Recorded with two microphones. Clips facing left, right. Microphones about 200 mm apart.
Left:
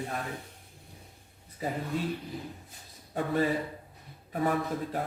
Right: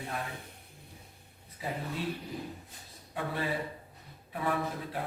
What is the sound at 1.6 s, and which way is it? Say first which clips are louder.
Speech: left 4 dB; 45° left (ahead or behind).